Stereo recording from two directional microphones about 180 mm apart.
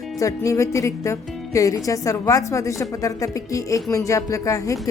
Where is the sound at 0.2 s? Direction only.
15° left (ahead or behind).